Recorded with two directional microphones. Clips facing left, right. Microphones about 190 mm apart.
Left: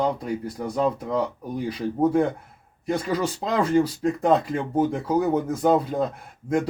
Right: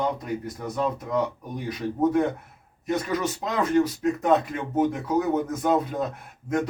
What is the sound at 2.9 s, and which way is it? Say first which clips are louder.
Speech: left 1 dB; 30° left (ahead or behind).